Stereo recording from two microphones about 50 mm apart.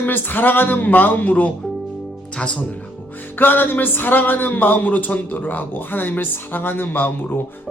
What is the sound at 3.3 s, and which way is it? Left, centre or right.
Speech, left.